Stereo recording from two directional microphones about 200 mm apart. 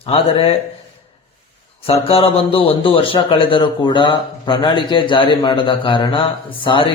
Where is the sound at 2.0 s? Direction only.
30° left (ahead or behind).